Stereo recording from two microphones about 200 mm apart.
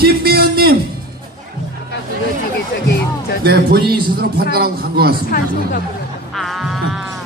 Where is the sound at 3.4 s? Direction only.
50° right (ahead or behind).